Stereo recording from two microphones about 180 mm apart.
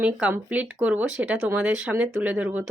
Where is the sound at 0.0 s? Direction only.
10° right (ahead or behind).